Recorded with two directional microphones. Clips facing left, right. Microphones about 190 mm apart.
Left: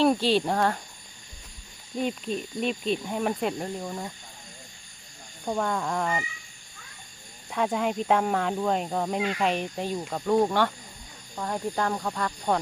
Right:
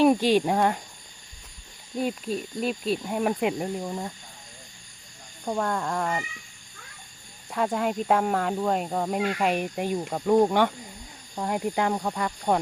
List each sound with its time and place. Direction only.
0.0 s speech: 15° right (ahead or behind)
2.0 s speech: 5° right (ahead or behind)
5.5 s speech: centre (ahead or behind)
7.5 s speech: centre (ahead or behind)